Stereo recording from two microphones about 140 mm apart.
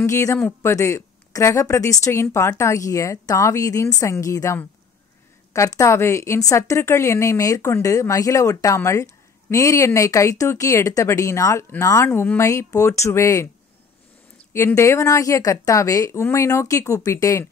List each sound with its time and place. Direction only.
0.0 s a woman's voice: 20° left (ahead or behind)
14.8 s a woman's voice: 20° left (ahead or behind)